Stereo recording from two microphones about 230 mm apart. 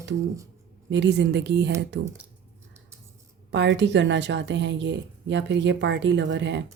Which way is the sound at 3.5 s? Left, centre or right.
Right.